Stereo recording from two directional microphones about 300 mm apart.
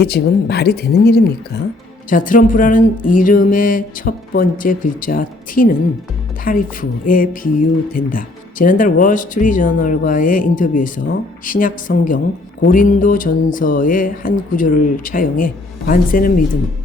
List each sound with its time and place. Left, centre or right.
0.0 s speech: left